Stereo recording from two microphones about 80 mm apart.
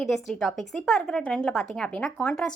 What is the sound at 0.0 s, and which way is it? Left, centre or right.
Speech, centre.